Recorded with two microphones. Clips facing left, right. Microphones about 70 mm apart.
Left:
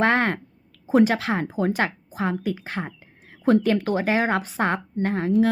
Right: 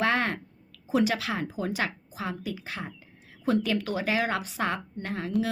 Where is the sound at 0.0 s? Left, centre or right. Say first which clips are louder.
Left 6 dB; left.